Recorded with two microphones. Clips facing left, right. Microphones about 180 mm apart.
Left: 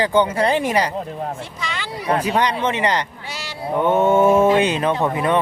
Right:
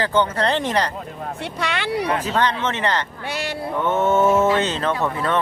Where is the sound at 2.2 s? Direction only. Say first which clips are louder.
Left 2 dB; 15° left (ahead or behind).